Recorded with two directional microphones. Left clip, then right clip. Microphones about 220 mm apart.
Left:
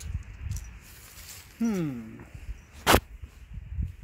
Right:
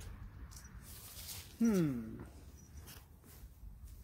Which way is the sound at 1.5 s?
45° left (ahead or behind).